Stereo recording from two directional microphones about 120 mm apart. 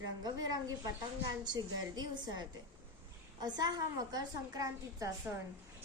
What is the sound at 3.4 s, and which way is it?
A woman's voice, 35° right (ahead or behind).